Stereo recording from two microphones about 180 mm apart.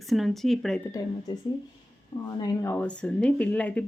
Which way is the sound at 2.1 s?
20° left (ahead or behind).